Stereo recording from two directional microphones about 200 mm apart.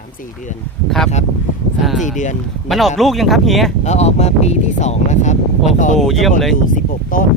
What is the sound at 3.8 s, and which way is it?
Speech, 35° left (ahead or behind).